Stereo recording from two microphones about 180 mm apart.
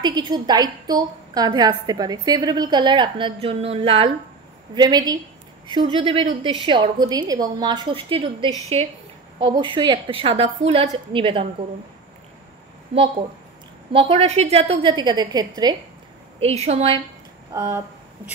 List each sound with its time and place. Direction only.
0.0 s a woman's voice: 25° right (ahead or behind)
4.7 s a woman's voice: 20° right (ahead or behind)
13.9 s a woman's voice: 30° right (ahead or behind)
16.3 s a woman's voice: 35° right (ahead or behind)
17.5 s speech: 15° right (ahead or behind)